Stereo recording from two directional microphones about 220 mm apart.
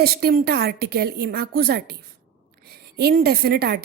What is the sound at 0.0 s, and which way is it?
A woman's voice, 45° right (ahead or behind).